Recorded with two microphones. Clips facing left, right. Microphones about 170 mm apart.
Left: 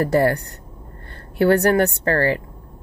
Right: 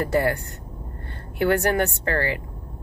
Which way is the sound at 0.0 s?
40° left (ahead or behind).